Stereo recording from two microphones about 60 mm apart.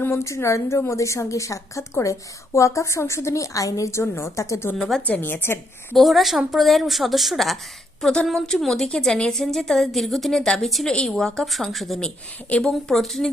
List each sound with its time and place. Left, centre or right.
0.0 s a woman's voice: left
4.8 s a woman's voice: centre
5.2 s a woman's voice: left
5.9 s a woman's voice: centre
8.0 s a woman's voice: centre
12.5 s a woman's voice: centre
13.0 s a woman's voice: centre